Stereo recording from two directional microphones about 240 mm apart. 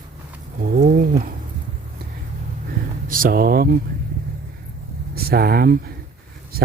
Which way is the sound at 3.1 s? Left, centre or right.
Right.